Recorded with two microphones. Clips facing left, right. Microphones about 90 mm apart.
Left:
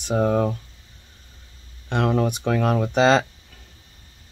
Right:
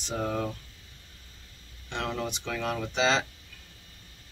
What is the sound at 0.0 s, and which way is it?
Speech, 55° left (ahead or behind).